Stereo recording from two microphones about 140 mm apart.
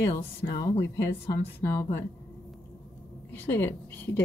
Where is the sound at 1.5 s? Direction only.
15° left (ahead or behind).